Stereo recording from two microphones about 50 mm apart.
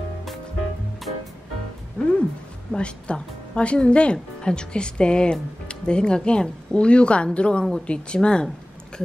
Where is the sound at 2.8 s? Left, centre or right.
Left.